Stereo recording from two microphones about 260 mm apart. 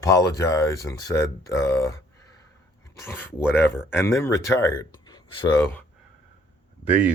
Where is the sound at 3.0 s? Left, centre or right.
Centre.